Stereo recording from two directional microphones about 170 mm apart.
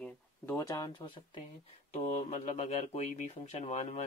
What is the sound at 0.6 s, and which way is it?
Speech, 20° left (ahead or behind).